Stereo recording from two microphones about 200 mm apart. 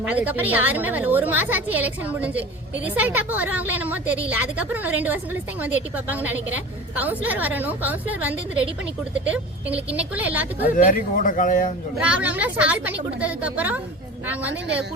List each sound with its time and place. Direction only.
0.0 s a woman's voice: 5° right (ahead or behind)
10.8 s a man's voice: 40° left (ahead or behind)
11.9 s a woman's voice: 5° right (ahead or behind)